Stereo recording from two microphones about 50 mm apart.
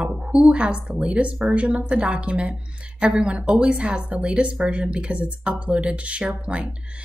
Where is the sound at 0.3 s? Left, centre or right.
Right.